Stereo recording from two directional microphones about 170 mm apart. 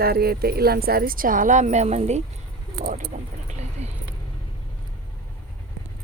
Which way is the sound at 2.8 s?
55° right (ahead or behind).